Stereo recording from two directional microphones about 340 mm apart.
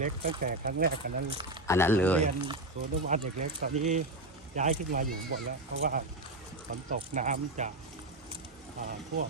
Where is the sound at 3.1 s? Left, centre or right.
Right.